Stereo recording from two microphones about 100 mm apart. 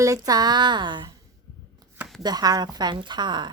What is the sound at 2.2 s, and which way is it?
A woman's voice, 40° right (ahead or behind).